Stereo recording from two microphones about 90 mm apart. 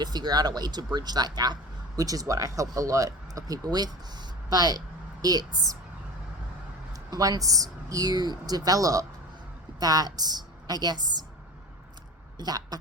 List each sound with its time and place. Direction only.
0.0 s speech: 50° right (ahead or behind)
6.9 s speech: 40° right (ahead or behind)
12.4 s speech: 50° right (ahead or behind)